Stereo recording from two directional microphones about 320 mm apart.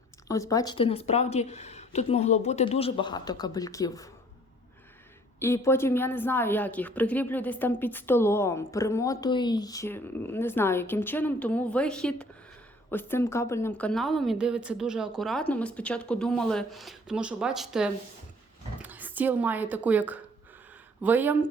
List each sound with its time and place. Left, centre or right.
0.3 s a woman's voice: centre
5.4 s a woman's voice: centre